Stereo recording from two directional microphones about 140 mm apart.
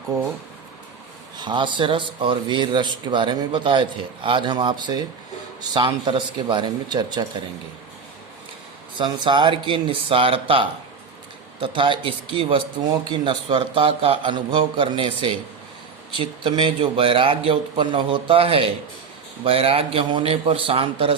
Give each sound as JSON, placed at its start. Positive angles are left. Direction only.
{"t": 0.1, "sound": "speech", "side_deg": -25}
{"t": 1.4, "sound": "speech", "side_deg": -35}
{"t": 9.0, "sound": "speech", "side_deg": -35}